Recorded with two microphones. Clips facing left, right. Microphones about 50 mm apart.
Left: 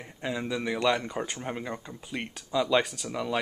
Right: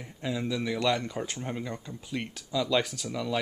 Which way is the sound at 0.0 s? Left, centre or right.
Centre.